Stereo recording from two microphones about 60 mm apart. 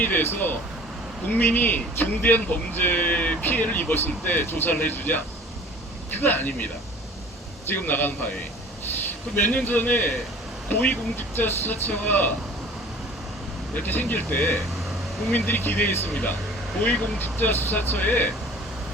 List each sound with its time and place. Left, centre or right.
0.0 s speech: left
7.7 s a man's voice: left
13.7 s speech: left
16.8 s speech: left
17.2 s speech: left